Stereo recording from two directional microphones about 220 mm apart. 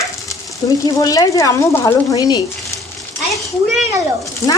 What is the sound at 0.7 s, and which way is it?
Speech, 15° left (ahead or behind).